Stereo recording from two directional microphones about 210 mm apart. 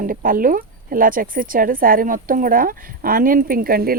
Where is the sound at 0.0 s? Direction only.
40° right (ahead or behind).